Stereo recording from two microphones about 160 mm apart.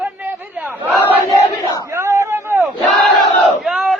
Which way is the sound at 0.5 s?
10° right (ahead or behind).